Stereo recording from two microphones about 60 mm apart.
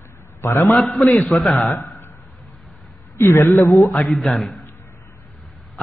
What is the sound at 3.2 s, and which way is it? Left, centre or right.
Mantra, left.